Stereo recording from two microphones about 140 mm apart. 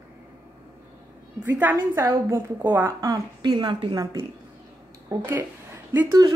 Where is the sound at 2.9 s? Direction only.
25° right (ahead or behind).